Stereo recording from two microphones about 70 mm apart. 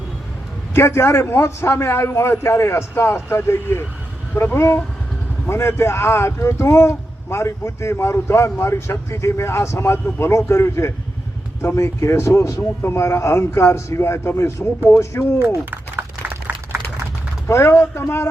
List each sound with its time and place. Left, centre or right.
0.7 s speech: left
15.7 s a sound: right
17.5 s speech: left